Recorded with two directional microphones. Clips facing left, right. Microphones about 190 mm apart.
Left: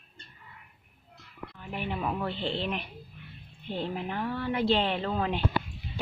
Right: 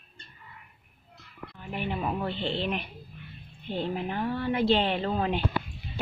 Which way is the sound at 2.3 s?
Centre (ahead or behind).